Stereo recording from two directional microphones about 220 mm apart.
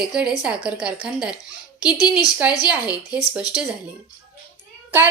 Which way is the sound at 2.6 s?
5° right (ahead or behind).